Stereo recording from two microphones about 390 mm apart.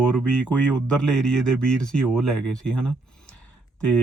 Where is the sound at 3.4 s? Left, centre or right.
Right.